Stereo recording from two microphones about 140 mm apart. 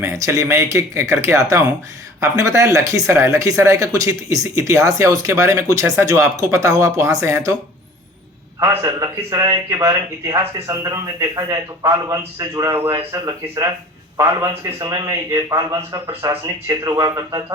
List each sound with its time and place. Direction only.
0.0 s speech: 20° right (ahead or behind)
8.8 s speech: 20° right (ahead or behind)